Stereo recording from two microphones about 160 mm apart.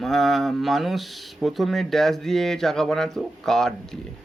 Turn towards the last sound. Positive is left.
turn(degrees=0)  # may be behind; listen again after turning